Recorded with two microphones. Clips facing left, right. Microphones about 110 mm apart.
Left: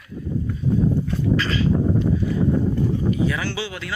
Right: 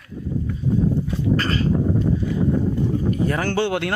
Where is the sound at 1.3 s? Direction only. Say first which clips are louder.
Even; 45° right (ahead or behind).